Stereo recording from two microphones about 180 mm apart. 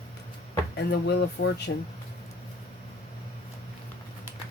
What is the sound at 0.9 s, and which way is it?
Speech, 70° left (ahead or behind).